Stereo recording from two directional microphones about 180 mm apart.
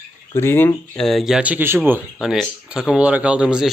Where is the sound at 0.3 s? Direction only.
15° left (ahead or behind).